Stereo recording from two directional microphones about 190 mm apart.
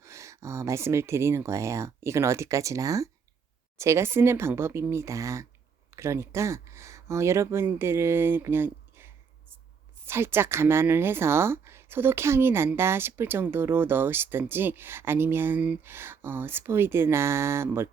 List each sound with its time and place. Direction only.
0.0 s speech: 15° right (ahead or behind)